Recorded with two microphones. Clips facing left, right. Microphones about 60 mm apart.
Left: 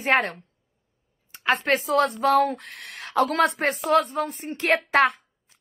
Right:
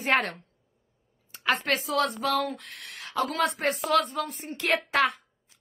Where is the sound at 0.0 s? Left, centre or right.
Left.